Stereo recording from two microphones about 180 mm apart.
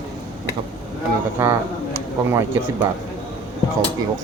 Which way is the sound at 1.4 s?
10° right (ahead or behind).